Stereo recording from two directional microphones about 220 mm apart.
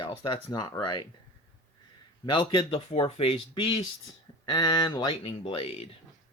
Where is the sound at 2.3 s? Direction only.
20° left (ahead or behind).